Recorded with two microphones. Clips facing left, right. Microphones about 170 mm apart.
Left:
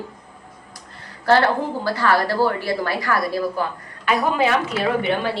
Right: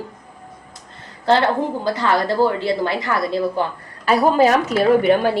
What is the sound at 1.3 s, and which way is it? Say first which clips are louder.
A woman's voice: right 1 dB; 20° right (ahead or behind).